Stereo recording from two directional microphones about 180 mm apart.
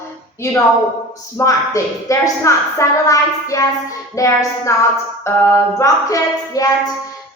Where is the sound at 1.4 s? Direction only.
15° left (ahead or behind).